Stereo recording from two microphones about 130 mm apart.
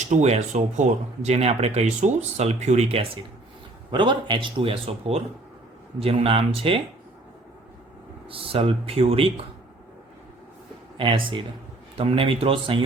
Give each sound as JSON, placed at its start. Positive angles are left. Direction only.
{"t": 0.0, "sound": "speech", "side_deg": -60}
{"t": 3.9, "sound": "a man's voice", "side_deg": -40}
{"t": 8.3, "sound": "speech", "side_deg": -45}
{"t": 10.9, "sound": "a man's voice", "side_deg": -40}